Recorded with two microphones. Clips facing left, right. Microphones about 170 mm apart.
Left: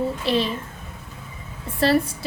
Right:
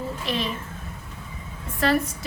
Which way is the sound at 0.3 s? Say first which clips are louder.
Left 5 dB; 30° left (ahead or behind).